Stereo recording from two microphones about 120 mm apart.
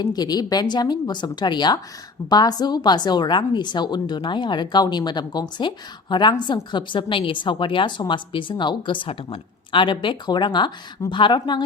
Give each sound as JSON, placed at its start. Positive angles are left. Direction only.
{"t": 0.0, "sound": "a woman's voice", "side_deg": 35}